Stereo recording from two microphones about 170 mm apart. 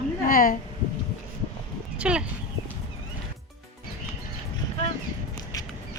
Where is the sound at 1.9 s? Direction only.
5° right (ahead or behind).